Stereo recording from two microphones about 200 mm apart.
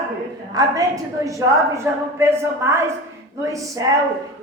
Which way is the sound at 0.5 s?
15° right (ahead or behind).